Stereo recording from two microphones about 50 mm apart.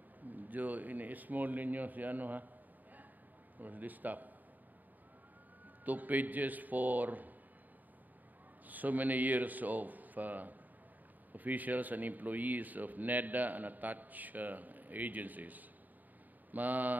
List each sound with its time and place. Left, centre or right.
0.3 s speech: right
3.5 s speech: right
5.9 s speech: right
8.6 s speech: right